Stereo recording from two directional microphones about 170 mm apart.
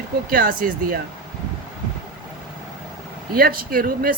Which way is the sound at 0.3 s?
55° right (ahead or behind).